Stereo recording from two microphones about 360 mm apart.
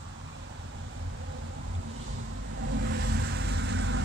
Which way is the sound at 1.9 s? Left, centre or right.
Right.